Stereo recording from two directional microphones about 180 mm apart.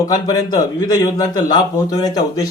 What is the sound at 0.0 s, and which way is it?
Speech, 20° left (ahead or behind).